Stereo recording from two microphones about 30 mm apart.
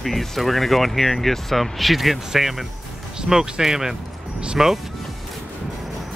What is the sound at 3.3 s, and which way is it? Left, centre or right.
Speech, centre.